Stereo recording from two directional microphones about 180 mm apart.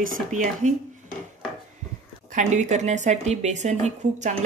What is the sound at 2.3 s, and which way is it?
Speech, 40° right (ahead or behind).